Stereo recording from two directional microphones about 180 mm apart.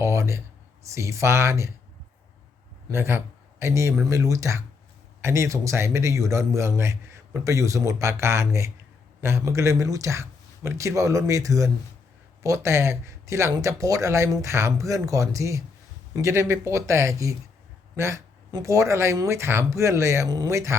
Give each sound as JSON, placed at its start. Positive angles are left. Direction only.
{"t": 0.0, "sound": "a sound", "side_deg": -15}
{"t": 0.9, "sound": "a man's voice", "side_deg": -15}
{"t": 2.9, "sound": "a man's voice", "side_deg": -15}